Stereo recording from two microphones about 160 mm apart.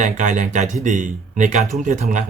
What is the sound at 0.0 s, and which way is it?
Speech, 50° right (ahead or behind).